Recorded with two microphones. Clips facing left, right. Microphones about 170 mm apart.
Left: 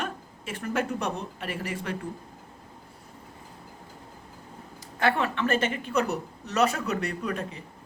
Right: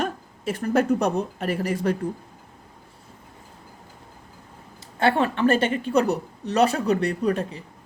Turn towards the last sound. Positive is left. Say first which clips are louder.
# right 8 dB
turn(degrees=-35)  # may be behind; listen again after turning